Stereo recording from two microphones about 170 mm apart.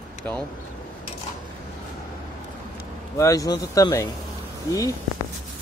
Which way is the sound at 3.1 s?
20° left (ahead or behind).